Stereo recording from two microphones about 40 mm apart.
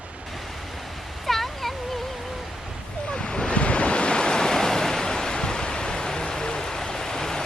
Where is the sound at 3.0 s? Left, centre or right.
Left.